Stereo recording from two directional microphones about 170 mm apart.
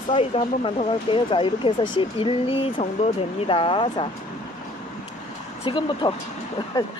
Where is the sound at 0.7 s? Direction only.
30° left (ahead or behind).